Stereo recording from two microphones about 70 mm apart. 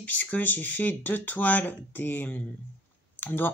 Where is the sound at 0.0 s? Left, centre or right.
Left.